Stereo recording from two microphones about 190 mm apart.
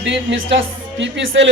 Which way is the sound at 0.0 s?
70° right (ahead or behind).